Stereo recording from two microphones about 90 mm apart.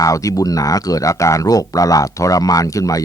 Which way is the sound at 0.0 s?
40° left (ahead or behind).